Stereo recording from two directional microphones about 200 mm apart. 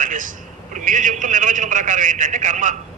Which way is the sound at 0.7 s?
40° right (ahead or behind).